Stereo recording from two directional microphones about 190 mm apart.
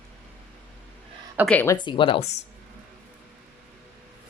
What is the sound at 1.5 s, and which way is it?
Speech, 10° left (ahead or behind).